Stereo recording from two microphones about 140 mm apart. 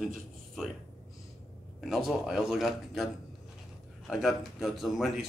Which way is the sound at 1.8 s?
Centre (ahead or behind).